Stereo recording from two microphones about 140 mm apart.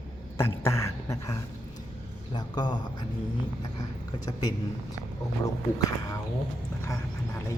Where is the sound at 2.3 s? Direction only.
30° left (ahead or behind).